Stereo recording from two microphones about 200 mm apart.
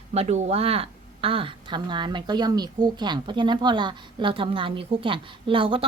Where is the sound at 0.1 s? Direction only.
35° right (ahead or behind).